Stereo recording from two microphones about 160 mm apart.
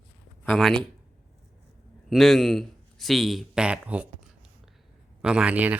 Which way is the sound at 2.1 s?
Centre (ahead or behind).